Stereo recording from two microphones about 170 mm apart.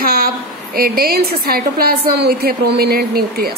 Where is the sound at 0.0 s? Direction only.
60° right (ahead or behind).